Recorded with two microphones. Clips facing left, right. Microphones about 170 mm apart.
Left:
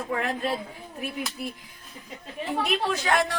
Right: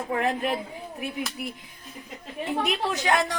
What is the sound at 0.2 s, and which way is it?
Speech, 15° right (ahead or behind).